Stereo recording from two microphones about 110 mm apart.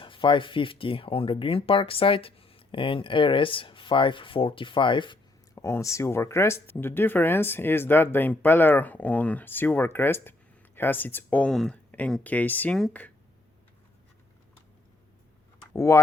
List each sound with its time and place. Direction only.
0.0 s speech: 50° left (ahead or behind)
5.5 s speech: 25° left (ahead or behind)
11.5 s speech: 5° left (ahead or behind)
11.9 s a sound: 15° left (ahead or behind)
12.2 s speech: 15° left (ahead or behind)
15.7 s speech: 25° left (ahead or behind)